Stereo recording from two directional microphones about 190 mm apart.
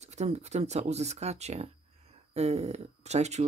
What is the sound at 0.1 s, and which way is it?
Speech, 35° right (ahead or behind).